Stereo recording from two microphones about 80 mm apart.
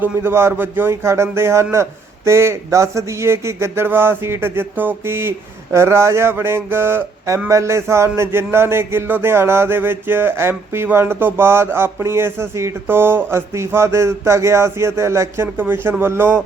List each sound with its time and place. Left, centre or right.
0.0 s speech: right